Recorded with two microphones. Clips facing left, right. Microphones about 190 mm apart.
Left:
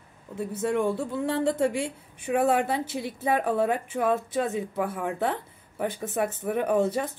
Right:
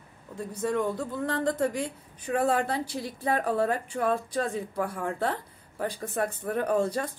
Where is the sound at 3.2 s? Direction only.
5° left (ahead or behind).